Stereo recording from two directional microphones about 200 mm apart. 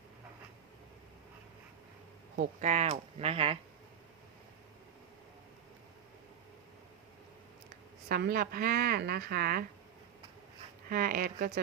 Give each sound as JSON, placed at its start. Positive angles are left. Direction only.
{"t": 2.3, "sound": "speech", "side_deg": -40}
{"t": 8.1, "sound": "a woman's voice", "side_deg": -50}
{"t": 10.8, "sound": "a woman's voice", "side_deg": -45}